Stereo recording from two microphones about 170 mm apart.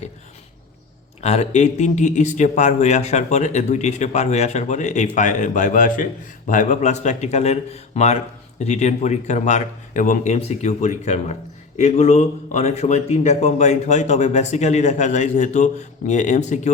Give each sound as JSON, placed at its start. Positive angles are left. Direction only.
{"t": 1.2, "sound": "speech", "side_deg": 40}